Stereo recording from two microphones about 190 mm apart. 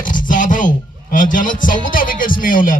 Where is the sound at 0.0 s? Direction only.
45° left (ahead or behind).